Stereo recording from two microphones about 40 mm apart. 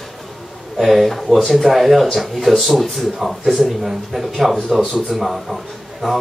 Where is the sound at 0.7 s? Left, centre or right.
Centre.